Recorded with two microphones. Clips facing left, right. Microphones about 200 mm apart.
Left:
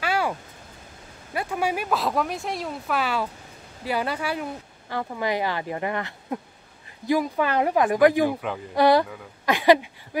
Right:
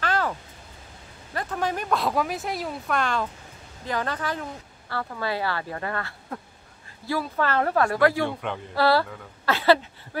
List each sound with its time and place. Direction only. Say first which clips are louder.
0.0 s a sound: left 1 dB; 10° left (ahead or behind)
1.3 s speech: left 2 dB; 10° left (ahead or behind)
8.3 s speech: left 3 dB; 5° left (ahead or behind)
8.7 s speech: left 3 dB; 20° left (ahead or behind)